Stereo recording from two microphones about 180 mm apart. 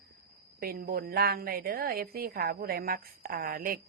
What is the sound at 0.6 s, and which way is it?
A woman's voice, 55° right (ahead or behind).